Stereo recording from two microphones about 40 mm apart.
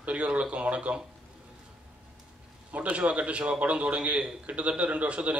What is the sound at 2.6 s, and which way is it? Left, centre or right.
A man's voice, right.